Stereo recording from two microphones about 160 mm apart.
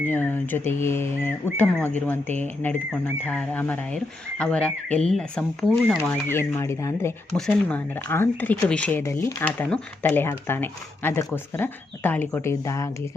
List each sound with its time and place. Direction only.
0.0 s speech: 10° left (ahead or behind)
6.1 s speech: 15° left (ahead or behind)
7.3 s speech: 5° left (ahead or behind)